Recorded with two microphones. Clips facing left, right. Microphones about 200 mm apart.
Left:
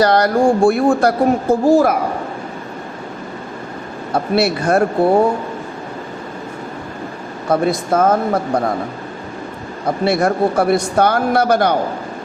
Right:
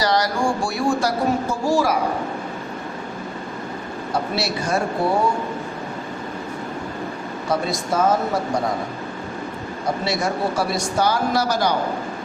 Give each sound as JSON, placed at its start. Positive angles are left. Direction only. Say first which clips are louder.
{"t": 0.0, "sound": "speech", "louder": "left 7 dB", "side_deg": 55}
{"t": 4.1, "sound": "speech", "louder": "left 8 dB", "side_deg": 55}
{"t": 7.4, "sound": "speech", "louder": "left 7 dB", "side_deg": 55}
{"t": 9.8, "sound": "speech", "louder": "left 7 dB", "side_deg": 55}